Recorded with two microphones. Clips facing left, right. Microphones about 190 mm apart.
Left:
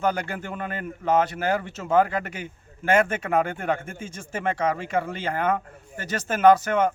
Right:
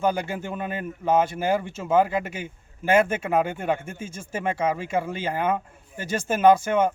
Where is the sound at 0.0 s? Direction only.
10° right (ahead or behind).